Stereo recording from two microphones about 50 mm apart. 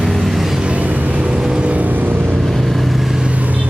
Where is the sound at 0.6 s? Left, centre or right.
Right.